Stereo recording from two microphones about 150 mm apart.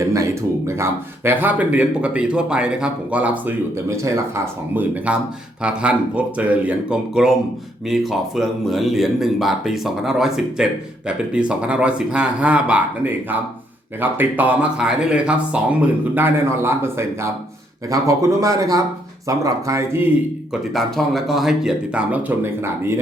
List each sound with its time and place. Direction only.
0.0 s a sound: 20° right (ahead or behind)
0.7 s a man's voice: 15° right (ahead or behind)
20.5 s speech: centre (ahead or behind)